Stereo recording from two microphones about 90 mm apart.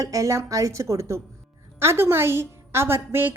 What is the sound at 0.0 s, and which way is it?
A woman's voice, 40° right (ahead or behind).